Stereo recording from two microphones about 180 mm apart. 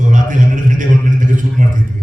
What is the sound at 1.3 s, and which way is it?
Speech, 45° right (ahead or behind).